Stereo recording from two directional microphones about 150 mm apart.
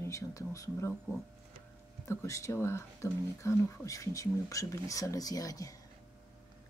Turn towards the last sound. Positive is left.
turn(degrees=25)  # may be behind; listen again after turning